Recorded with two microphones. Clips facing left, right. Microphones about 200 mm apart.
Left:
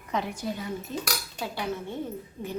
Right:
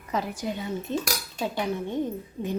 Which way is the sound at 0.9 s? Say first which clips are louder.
Right 8 dB; 25° right (ahead or behind).